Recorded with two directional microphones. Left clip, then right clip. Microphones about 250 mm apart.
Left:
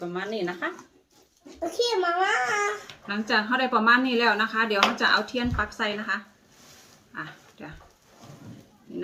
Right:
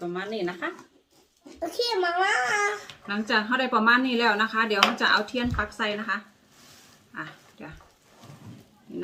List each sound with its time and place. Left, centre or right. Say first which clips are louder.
0.0 s speech: even; centre
1.5 s a child's voice: left 1 dB; right
3.1 s speech: even; centre
7.1 s a sound: even; centre